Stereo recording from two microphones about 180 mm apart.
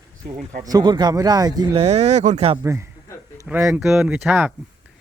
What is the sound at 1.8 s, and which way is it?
Speech, 40° right (ahead or behind).